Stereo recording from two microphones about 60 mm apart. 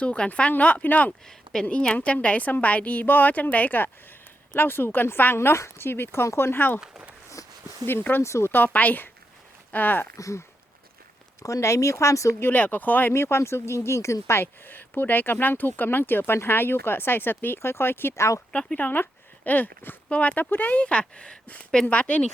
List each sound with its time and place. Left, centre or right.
0.0 s a woman's voice: left
6.7 s speech: centre
7.4 s a sound: left
7.9 s speech: left
8.2 s speech: left
8.4 s a woman's voice: left
10.2 s speech: left
11.4 s speech: left
12.4 s a woman's voice: left
13.1 s speech: left
18.2 s speech: left
18.8 s a woman's voice: left
20.1 s a woman's voice: left